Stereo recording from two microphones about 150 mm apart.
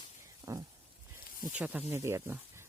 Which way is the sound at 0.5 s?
20° right (ahead or behind).